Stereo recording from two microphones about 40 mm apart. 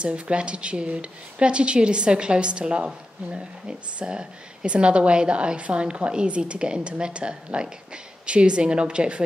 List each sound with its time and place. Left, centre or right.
0.0 s speech: right